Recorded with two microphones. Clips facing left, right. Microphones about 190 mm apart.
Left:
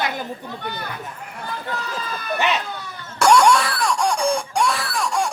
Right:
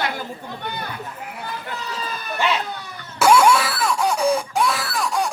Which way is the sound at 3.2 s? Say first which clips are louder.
Even; 5° right (ahead or behind).